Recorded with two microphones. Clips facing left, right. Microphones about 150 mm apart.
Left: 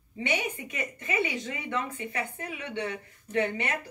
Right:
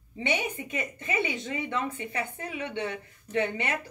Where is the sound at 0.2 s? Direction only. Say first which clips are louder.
Right 1 dB; 25° right (ahead or behind).